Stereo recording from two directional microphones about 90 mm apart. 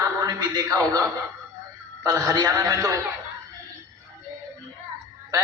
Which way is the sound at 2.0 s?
45° right (ahead or behind).